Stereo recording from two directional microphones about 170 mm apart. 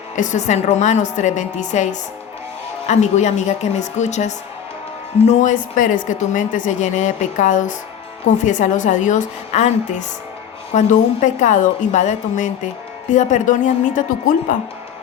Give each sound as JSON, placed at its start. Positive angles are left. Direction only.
{"t": 0.2, "sound": "a woman's voice", "side_deg": 45}